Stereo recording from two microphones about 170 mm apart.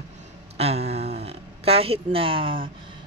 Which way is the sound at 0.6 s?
35° right (ahead or behind).